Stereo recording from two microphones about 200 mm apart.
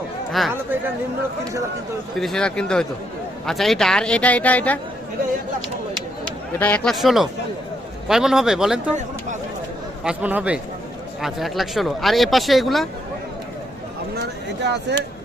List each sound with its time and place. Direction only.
0.4 s speech: centre (ahead or behind)
2.1 s speech: centre (ahead or behind)
6.6 s speech: 5° left (ahead or behind)
10.0 s speech: 5° right (ahead or behind)
14.6 s speech: 60° right (ahead or behind)